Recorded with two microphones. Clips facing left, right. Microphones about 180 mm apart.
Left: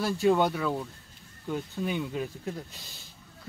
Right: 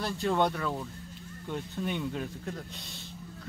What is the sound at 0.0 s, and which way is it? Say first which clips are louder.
A man's voice: left 4 dB; 5° left (ahead or behind).